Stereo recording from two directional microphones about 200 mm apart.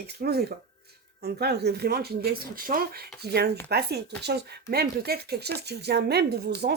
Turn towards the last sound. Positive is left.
turn(degrees=-55)  # may be behind; listen again after turning